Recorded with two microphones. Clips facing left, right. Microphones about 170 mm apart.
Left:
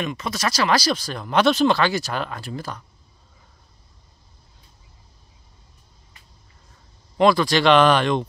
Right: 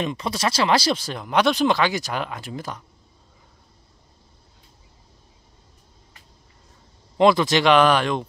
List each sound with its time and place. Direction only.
0.0 s speech: 30° right (ahead or behind)
1.2 s speech: 15° right (ahead or behind)
7.2 s speech: 20° right (ahead or behind)
7.6 s speech: 10° right (ahead or behind)